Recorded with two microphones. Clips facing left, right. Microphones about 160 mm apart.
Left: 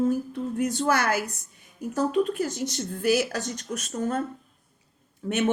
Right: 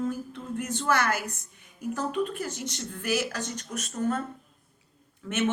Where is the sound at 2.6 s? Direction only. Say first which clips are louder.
Left 8 dB; 40° left (ahead or behind).